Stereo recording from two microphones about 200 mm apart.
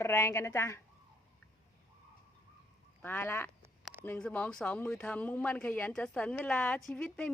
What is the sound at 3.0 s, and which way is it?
Speech, 10° left (ahead or behind).